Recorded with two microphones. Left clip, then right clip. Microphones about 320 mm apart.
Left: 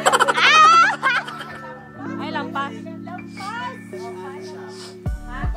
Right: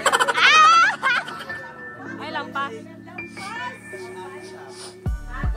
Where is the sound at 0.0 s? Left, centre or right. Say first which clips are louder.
Left 2 dB; centre.